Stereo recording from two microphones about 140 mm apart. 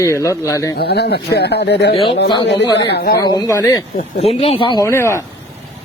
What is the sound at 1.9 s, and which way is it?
Speech, 40° left (ahead or behind).